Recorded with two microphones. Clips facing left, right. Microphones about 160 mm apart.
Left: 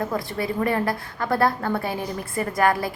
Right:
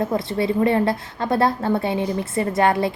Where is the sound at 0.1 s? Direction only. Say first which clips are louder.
Right 5 dB; 25° right (ahead or behind).